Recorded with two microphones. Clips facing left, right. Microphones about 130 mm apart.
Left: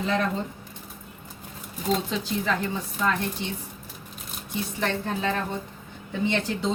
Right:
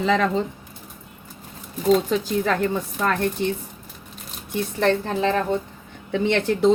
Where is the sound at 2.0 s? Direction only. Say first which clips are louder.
Right 5 dB; 50° right (ahead or behind).